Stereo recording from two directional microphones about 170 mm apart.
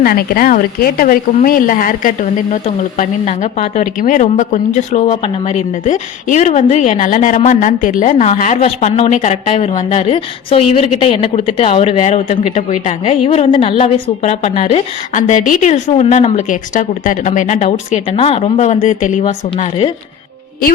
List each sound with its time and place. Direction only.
0.0 s a woman's voice: 60° left (ahead or behind); by 14.8 s 35° left (ahead or behind)
15.1 s a woman's voice: 50° left (ahead or behind)